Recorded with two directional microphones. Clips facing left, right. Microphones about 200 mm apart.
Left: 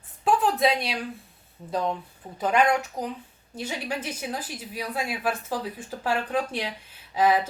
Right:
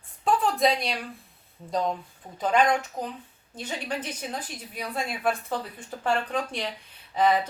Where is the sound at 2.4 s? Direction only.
5° left (ahead or behind).